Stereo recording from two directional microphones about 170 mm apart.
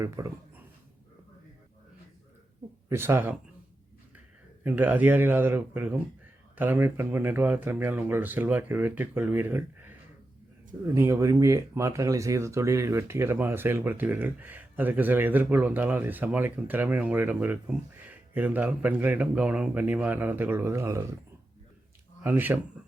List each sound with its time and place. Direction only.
0.0 s speech: 20° right (ahead or behind)
2.9 s speech: 15° right (ahead or behind)
4.6 s speech: 10° right (ahead or behind)
22.2 s speech: 10° right (ahead or behind)